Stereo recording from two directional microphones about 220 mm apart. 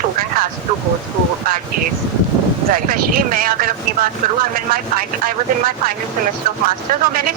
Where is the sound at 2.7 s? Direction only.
40° right (ahead or behind).